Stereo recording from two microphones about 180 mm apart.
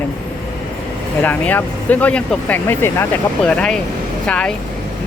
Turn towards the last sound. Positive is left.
turn(degrees=5)  # may be behind; listen again after turning